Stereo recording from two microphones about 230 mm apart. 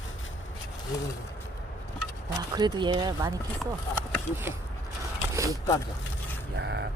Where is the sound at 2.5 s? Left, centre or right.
Centre.